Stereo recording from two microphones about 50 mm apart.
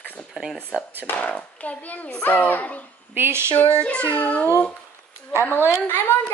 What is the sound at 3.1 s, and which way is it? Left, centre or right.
Speech, right.